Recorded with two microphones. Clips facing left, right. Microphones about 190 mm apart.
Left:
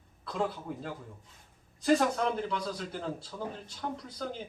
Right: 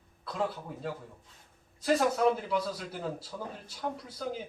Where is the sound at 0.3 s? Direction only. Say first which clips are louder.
Left 1 dB; centre (ahead or behind).